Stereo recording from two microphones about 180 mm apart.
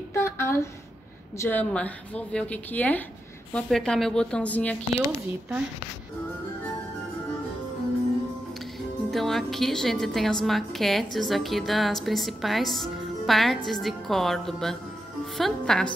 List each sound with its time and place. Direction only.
0.1 s a sound: 15° left (ahead or behind)
1.4 s a woman's voice: 10° left (ahead or behind)
4.9 s speech: 15° right (ahead or behind)
9.1 s a woman's voice: centre (ahead or behind)